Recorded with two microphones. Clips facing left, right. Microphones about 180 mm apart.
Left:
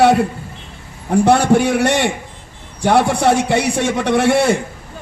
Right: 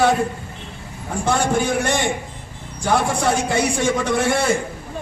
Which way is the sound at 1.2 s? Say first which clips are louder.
Left 7 dB; 70° left (ahead or behind).